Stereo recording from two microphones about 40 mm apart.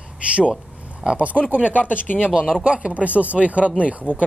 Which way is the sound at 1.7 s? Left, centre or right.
Left.